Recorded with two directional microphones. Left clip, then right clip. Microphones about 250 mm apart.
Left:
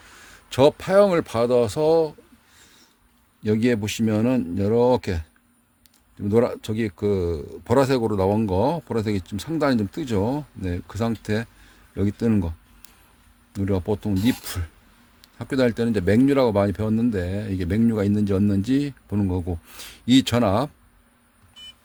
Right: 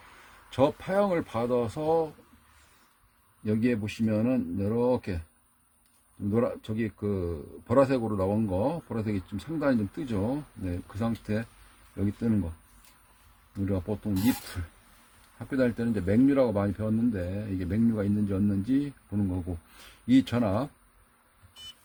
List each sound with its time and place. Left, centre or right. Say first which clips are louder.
0.5 s speech: left 9 dB; left
3.4 s speech: left 7 dB; left
6.3 s speech: left 8 dB; left
13.5 s speech: left 8 dB; left
15.4 s speech: left 7 dB; left